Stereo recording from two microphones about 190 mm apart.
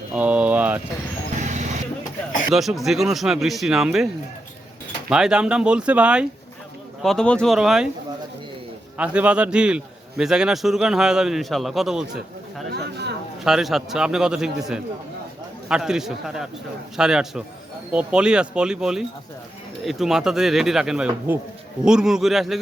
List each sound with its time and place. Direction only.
0.1 s a sound: 5° right (ahead or behind)
1.4 s vehicle: 40° right (ahead or behind)
2.5 s a man's voice: centre (ahead or behind)
9.0 s a man's voice: 5° right (ahead or behind)
12.7 s a sound: 60° right (ahead or behind)
13.4 s a man's voice: centre (ahead or behind)
15.7 s a man's voice: 5° right (ahead or behind)